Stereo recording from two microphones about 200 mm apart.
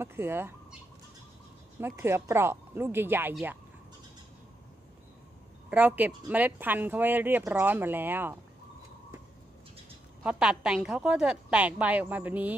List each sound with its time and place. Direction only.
0.0 s speech: 10° right (ahead or behind)
1.8 s speech: 10° right (ahead or behind)
5.7 s speech: 10° right (ahead or behind)
10.2 s a woman's voice: 5° right (ahead or behind)